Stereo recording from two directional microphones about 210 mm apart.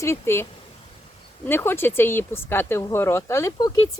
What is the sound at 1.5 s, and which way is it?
Speech, 10° left (ahead or behind).